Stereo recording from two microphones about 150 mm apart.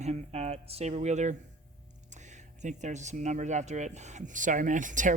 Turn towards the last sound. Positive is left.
turn(degrees=-60)  # may be behind; listen again after turning